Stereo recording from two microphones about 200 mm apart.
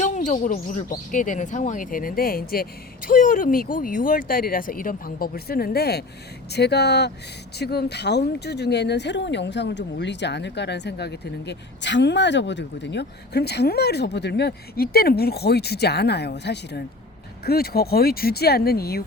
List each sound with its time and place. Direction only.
0.0 s speech: 40° left (ahead or behind)